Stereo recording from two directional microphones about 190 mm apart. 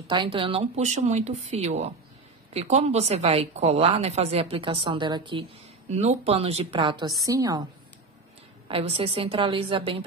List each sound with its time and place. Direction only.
0.1 s a woman's voice: 25° right (ahead or behind)
5.9 s a woman's voice: 35° right (ahead or behind); by 7.6 s 20° right (ahead or behind)
8.6 s a woman's voice: 30° right (ahead or behind)